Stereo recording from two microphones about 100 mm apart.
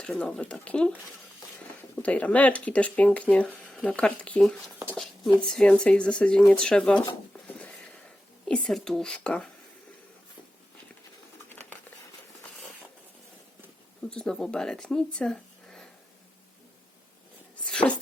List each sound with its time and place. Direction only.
0.0 s speech: 10° left (ahead or behind)
2.0 s speech: 15° left (ahead or behind)
7.4 s a sound: 15° left (ahead or behind)
8.4 s speech: 5° left (ahead or behind)
11.4 s patter: 20° left (ahead or behind)
14.1 s speech: 5° left (ahead or behind)
17.7 s a sound: 10° left (ahead or behind)